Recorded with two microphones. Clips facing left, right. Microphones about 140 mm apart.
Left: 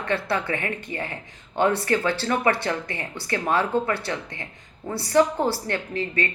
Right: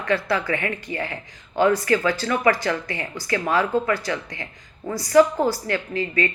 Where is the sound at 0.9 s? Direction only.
15° right (ahead or behind).